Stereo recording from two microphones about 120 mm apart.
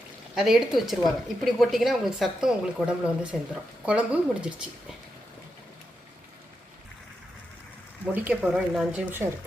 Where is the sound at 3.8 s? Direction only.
10° right (ahead or behind).